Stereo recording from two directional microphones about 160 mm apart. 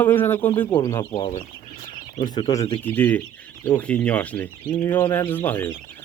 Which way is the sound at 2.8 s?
10° left (ahead or behind).